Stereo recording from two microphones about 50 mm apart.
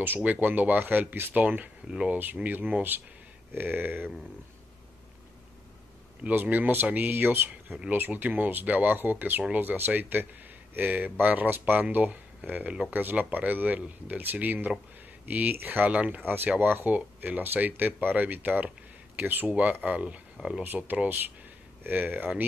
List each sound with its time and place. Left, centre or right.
0.4 s speech: right
6.2 s speech: right
15.9 s speech: right
16.2 s speech: right
20.6 s speech: right